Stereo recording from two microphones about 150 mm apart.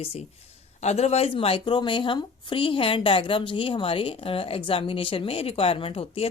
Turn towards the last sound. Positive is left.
turn(degrees=40)  # may be behind; listen again after turning